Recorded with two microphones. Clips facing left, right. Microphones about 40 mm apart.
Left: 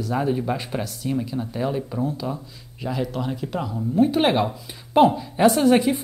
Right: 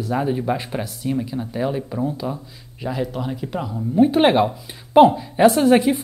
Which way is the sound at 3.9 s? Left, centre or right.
Centre.